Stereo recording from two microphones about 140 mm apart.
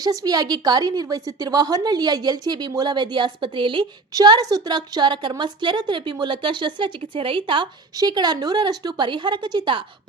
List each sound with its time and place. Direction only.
0.0 s a woman's voice: 25° right (ahead or behind)